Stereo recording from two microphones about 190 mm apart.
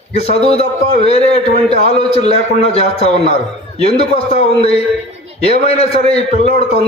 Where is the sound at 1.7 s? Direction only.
35° left (ahead or behind).